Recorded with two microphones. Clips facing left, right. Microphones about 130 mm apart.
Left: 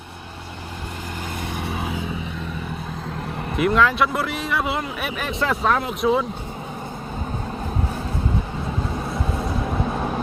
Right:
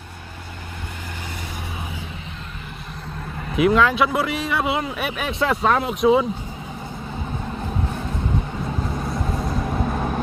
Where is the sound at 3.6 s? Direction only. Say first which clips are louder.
Right 2 dB; centre (ahead or behind).